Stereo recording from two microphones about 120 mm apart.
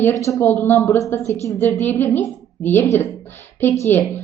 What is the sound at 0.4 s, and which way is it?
Speech, 15° left (ahead or behind).